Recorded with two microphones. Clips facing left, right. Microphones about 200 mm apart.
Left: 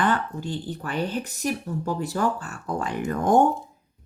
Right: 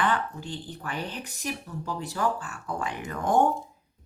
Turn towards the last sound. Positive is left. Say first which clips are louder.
# left 6 dB
turn(degrees=45)  # may be behind; listen again after turning